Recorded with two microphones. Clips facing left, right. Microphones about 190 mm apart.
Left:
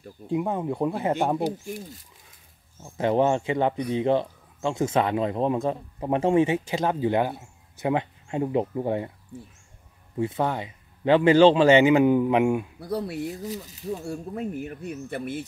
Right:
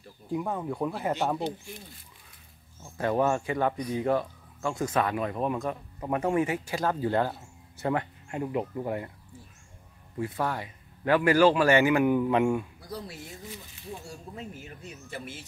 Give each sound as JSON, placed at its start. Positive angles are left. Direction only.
{"t": 0.3, "sound": "speech", "side_deg": 20}
{"t": 2.8, "sound": "speech", "side_deg": 20}
{"t": 10.1, "sound": "speech", "side_deg": 25}
{"t": 12.8, "sound": "speech", "side_deg": 60}
{"t": 13.3, "sound": "speech", "side_deg": 40}
{"t": 14.0, "sound": "speech", "side_deg": 55}